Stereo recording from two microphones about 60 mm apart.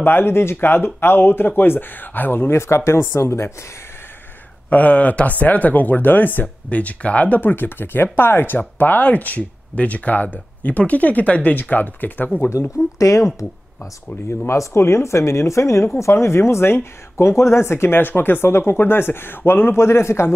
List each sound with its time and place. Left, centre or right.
0.0 s speech: left
4.6 s speech: left
12.5 s speech: left
14.6 s speech: left